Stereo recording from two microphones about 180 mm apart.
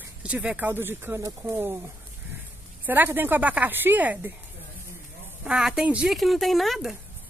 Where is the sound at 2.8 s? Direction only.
10° right (ahead or behind).